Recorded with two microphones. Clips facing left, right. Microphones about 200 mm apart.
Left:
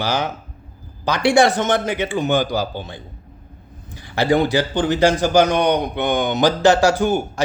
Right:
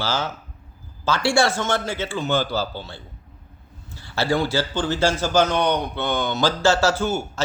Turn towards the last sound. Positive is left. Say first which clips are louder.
# left 5 dB
turn(degrees=15)  # may be behind; listen again after turning